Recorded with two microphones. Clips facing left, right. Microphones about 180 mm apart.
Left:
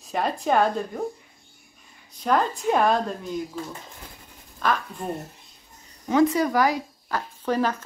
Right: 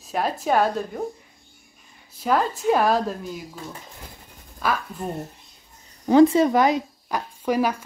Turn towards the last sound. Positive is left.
turn(degrees=-10)  # may be behind; listen again after turning